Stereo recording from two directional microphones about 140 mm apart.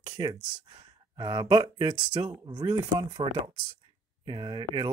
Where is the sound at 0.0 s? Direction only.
30° right (ahead or behind).